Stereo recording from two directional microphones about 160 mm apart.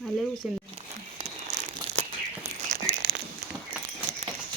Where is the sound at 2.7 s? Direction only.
55° right (ahead or behind).